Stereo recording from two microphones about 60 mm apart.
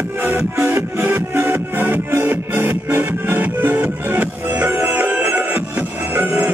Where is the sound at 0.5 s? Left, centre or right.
Right.